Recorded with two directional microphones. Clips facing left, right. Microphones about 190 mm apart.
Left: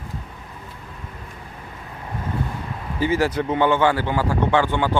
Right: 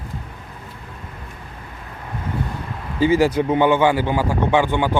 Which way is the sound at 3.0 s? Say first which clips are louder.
Right 5 dB; 15° right (ahead or behind).